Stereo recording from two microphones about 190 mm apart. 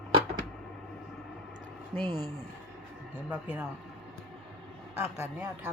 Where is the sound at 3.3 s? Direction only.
5° right (ahead or behind).